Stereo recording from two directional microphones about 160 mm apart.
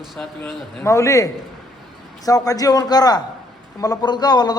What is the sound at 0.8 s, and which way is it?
Speech, 20° left (ahead or behind).